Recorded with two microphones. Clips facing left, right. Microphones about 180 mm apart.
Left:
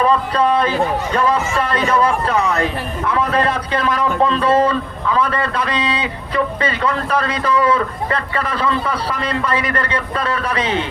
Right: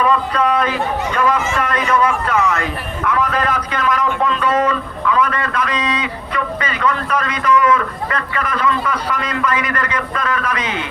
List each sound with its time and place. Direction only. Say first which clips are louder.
0.0 s a man's voice: left 1 dB; 30° left (ahead or behind)